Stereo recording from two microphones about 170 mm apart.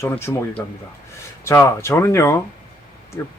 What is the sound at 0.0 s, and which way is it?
Speech, 15° left (ahead or behind).